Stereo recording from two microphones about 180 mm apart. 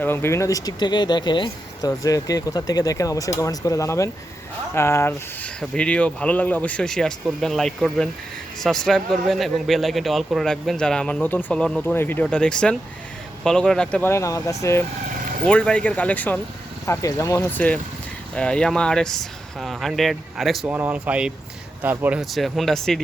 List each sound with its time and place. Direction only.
0.0 s speech: 15° left (ahead or behind)
20.7 s speech: 10° right (ahead or behind)